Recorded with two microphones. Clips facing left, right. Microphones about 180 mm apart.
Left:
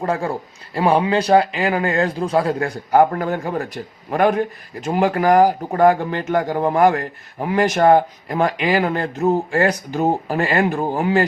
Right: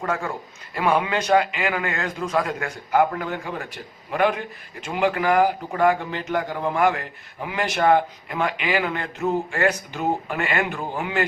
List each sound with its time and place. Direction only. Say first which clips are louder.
0.0 s a man's voice: left 5 dB; 35° left (ahead or behind)